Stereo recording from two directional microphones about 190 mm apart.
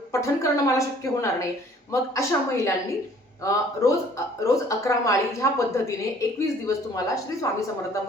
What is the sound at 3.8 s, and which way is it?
A woman's voice, 15° left (ahead or behind).